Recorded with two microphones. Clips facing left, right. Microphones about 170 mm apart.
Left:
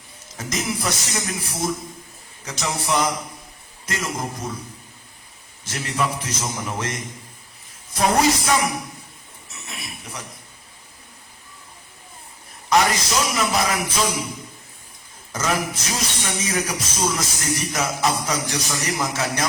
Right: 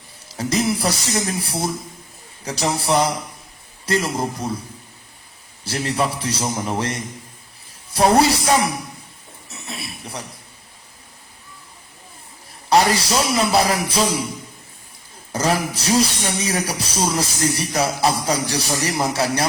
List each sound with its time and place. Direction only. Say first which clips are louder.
0.3 s speech: right 7 dB; 35° right (ahead or behind)
5.6 s speech: right 3 dB; 35° right (ahead or behind)
9.5 s a sound: right 4 dB; 30° right (ahead or behind)
12.7 s speech: right 3 dB; 35° right (ahead or behind)
15.3 s speech: right 3 dB; 35° right (ahead or behind)